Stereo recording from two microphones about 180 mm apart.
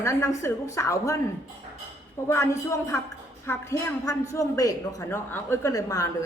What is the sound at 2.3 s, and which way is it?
A woman's voice, 15° left (ahead or behind).